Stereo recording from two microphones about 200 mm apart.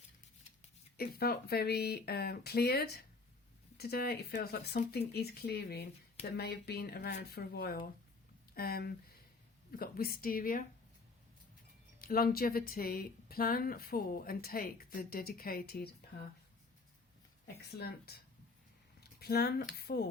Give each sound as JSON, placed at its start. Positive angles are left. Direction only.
{"t": 1.2, "sound": "speech", "side_deg": 50}
{"t": 11.9, "sound": "speech", "side_deg": 45}
{"t": 17.7, "sound": "speech", "side_deg": 55}
{"t": 18.9, "sound": "a sound", "side_deg": 55}
{"t": 19.8, "sound": "speech", "side_deg": 50}